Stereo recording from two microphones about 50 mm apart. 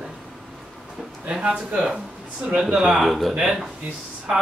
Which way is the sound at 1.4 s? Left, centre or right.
Right.